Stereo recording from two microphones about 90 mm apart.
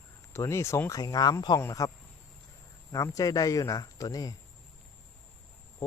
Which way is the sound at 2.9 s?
40° left (ahead or behind).